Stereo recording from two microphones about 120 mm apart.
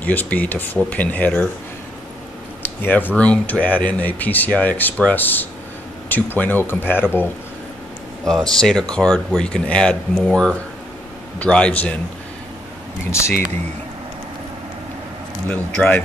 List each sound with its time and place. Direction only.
0.0 s speech: 15° left (ahead or behind)
2.6 s a sound: 15° left (ahead or behind)
3.2 s speech: 10° left (ahead or behind)
8.5 s speech: 5° left (ahead or behind)
15.4 s speech: 10° left (ahead or behind)